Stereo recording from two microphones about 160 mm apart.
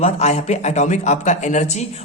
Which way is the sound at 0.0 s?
45° left (ahead or behind).